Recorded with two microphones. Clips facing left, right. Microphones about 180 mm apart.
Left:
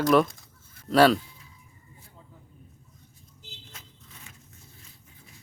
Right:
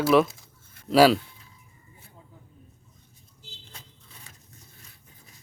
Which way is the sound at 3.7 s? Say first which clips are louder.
Even; 35° right (ahead or behind).